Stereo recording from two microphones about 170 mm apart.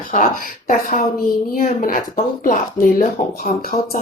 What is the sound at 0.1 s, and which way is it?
Speech, 55° left (ahead or behind).